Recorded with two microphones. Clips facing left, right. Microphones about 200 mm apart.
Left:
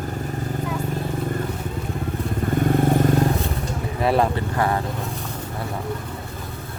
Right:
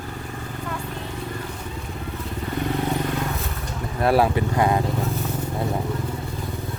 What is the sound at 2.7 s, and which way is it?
Vehicle, 50° left (ahead or behind).